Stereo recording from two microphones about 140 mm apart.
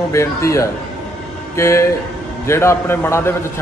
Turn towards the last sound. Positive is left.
turn(degrees=15)  # may be behind; listen again after turning